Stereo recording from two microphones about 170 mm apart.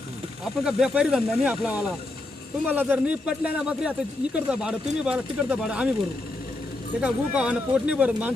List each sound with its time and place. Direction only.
0.6 s speech: 5° right (ahead or behind)
7.0 s speech: 5° right (ahead or behind)